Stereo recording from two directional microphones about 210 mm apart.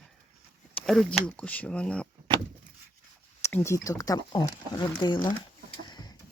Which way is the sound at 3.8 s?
15° left (ahead or behind).